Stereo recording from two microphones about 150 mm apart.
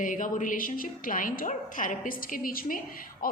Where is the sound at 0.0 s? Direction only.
60° left (ahead or behind).